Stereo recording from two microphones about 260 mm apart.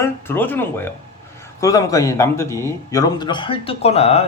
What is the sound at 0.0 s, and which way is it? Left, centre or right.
Speech, centre.